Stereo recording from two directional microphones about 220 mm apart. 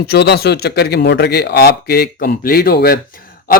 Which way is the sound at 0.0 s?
50° left (ahead or behind).